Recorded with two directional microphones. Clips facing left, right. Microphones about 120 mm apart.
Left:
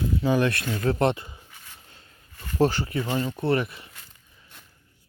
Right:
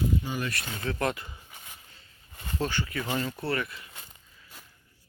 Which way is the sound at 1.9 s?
45° left (ahead or behind).